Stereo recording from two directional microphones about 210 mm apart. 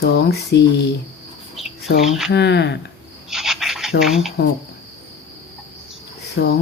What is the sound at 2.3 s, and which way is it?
Speech, 55° left (ahead or behind).